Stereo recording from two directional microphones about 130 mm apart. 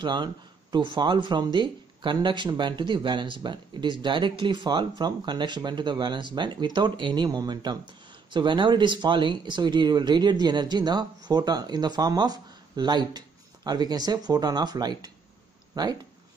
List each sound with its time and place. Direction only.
0.0 s speech: 35° right (ahead or behind)